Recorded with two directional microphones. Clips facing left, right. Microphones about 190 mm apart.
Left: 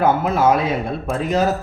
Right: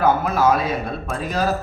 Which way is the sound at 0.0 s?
25° left (ahead or behind).